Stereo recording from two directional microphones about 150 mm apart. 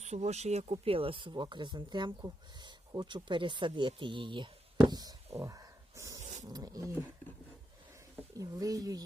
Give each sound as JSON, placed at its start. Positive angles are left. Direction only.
{"t": 0.0, "sound": "speech", "side_deg": -50}
{"t": 4.9, "sound": "a sound", "side_deg": -25}
{"t": 6.5, "sound": "speech", "side_deg": -25}
{"t": 8.4, "sound": "speech", "side_deg": -25}